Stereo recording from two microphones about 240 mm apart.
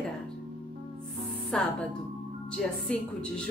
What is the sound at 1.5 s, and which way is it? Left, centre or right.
Speech, centre.